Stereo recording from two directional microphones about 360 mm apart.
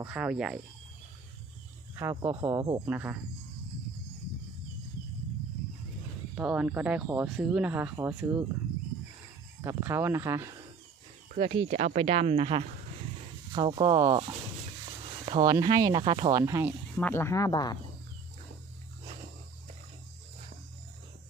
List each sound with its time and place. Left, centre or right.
0.0 s speech: centre
2.0 s speech: centre
6.3 s speech: centre
9.6 s speech: centre
17.0 s speech: centre